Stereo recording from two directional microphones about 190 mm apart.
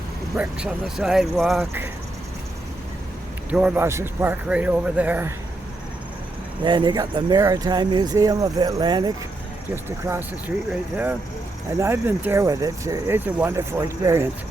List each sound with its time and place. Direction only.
0.3 s speech: 5° right (ahead or behind)
3.5 s speech: 10° right (ahead or behind)
6.7 s speech: 25° right (ahead or behind)
9.7 s speech: 10° right (ahead or behind)